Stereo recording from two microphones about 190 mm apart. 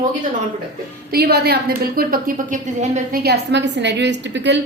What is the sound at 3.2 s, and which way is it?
A woman's voice, 60° right (ahead or behind).